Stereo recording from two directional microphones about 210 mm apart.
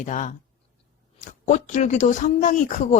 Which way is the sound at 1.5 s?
35° left (ahead or behind).